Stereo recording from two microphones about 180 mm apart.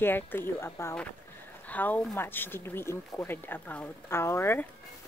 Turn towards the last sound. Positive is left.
turn(degrees=15)  # may be behind; listen again after turning